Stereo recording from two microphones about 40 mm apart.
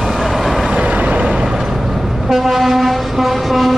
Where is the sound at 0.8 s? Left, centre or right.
Right.